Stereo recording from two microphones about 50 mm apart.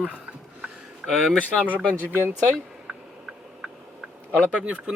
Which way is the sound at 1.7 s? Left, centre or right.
Left.